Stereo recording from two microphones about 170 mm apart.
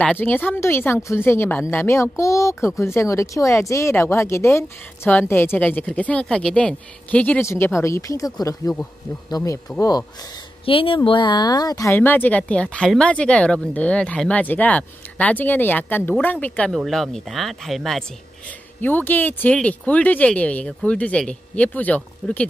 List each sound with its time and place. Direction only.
0.0 s speech: 10° left (ahead or behind)